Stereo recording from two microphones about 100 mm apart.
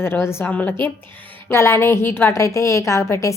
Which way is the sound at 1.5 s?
25° left (ahead or behind).